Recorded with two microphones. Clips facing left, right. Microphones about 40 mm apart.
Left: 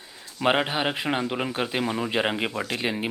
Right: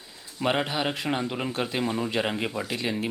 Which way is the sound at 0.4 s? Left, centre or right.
Left.